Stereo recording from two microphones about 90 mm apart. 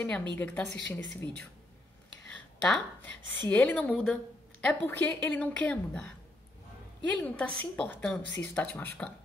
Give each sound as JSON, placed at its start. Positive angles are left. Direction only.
{"t": 0.0, "sound": "a woman's voice", "side_deg": 15}